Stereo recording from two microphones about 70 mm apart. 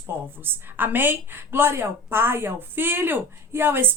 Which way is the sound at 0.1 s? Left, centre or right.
Right.